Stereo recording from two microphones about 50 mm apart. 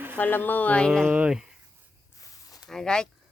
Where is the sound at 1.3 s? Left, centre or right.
Centre.